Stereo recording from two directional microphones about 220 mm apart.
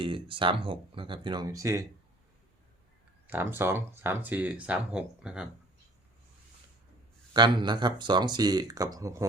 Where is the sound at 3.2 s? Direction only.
10° right (ahead or behind).